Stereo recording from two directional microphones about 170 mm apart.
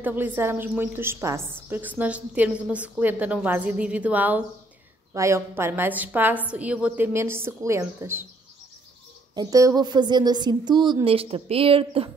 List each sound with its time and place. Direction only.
0.0 s a woman's voice: 10° right (ahead or behind)
9.3 s speech: 20° right (ahead or behind)